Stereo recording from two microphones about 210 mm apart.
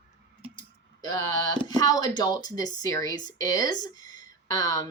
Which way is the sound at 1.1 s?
90° right.